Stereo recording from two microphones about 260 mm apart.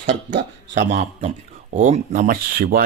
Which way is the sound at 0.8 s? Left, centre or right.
Right.